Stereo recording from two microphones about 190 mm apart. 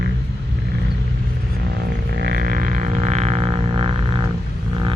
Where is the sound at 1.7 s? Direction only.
60° right (ahead or behind).